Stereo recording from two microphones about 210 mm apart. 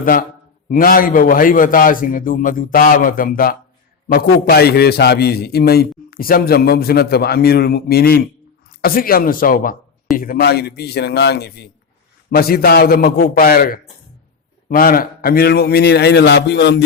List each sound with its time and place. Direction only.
0.0 s a man's voice: 40° left (ahead or behind)